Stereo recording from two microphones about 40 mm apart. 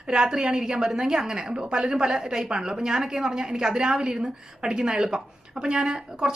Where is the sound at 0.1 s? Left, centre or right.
Right.